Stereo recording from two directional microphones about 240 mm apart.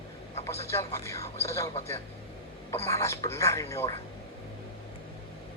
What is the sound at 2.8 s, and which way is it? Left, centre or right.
Speech, centre.